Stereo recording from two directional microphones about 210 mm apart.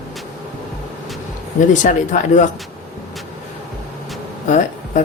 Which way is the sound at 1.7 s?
35° left (ahead or behind).